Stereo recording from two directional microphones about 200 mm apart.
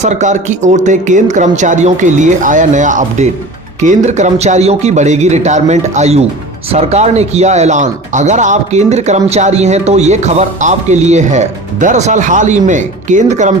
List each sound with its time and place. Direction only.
0.0 s speech: 35° right (ahead or behind)